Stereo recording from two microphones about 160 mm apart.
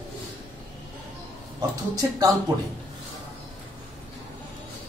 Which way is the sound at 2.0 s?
20° right (ahead or behind).